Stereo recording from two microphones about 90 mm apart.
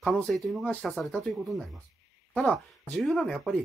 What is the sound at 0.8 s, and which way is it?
Speech, 5° left (ahead or behind).